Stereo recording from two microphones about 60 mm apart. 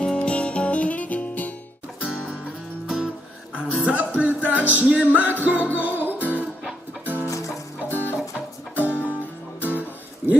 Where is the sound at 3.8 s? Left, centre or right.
Right.